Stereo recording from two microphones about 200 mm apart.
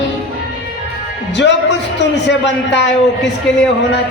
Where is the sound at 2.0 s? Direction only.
60° left (ahead or behind).